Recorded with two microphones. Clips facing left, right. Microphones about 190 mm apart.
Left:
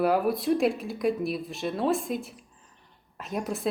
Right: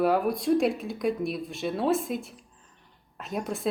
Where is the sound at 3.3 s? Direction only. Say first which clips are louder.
Left 1 dB; centre (ahead or behind).